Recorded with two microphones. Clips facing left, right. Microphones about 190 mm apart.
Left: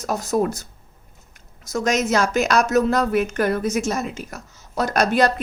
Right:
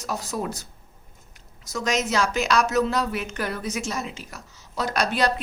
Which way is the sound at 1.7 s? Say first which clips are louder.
Left 4 dB; 45° left (ahead or behind).